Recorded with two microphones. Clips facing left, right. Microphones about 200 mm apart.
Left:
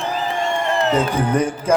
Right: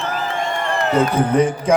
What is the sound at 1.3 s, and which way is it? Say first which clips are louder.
Speech: right 4 dB; 10° left (ahead or behind).